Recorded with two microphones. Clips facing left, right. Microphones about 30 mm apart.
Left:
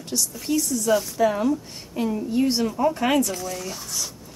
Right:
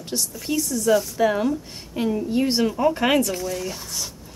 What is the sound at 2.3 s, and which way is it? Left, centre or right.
Speech, right.